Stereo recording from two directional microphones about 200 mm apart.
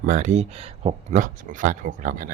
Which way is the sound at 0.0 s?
40° right (ahead or behind).